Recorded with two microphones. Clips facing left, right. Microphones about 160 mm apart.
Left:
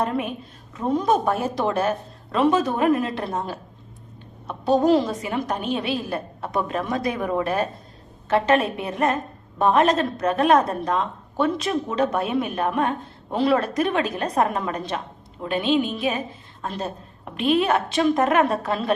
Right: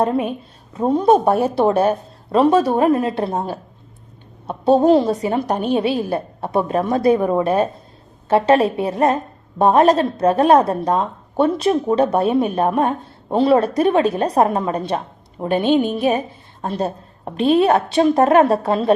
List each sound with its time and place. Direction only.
0.0 s a woman's voice: 30° right (ahead or behind)
15.8 s speech: 55° right (ahead or behind)
16.0 s a woman's voice: 35° right (ahead or behind)